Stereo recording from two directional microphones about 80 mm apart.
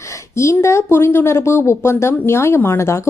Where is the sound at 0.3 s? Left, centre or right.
Left.